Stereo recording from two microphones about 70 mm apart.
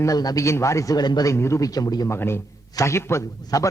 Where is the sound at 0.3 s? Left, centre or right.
Left.